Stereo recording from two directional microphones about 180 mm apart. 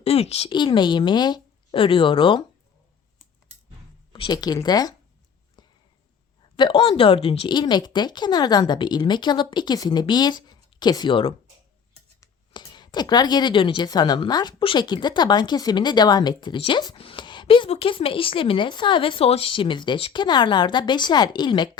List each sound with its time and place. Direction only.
0.0 s speech: 35° left (ahead or behind)
0.5 s speech: 25° left (ahead or behind)
4.1 s speech: 20° left (ahead or behind)
5.6 s a sound: 25° left (ahead or behind)
6.6 s speech: 30° left (ahead or behind)